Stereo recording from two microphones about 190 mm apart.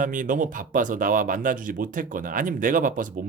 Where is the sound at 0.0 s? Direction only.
45° right (ahead or behind).